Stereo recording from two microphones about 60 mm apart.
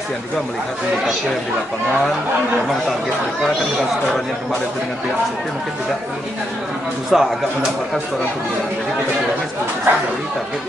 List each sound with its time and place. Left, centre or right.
7.1 s a man's voice: centre
9.9 s speech: right